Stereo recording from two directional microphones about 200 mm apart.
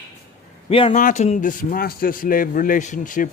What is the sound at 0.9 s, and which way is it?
Speech, 40° left (ahead or behind).